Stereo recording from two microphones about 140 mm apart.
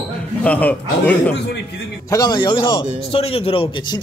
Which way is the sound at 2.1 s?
30° left (ahead or behind).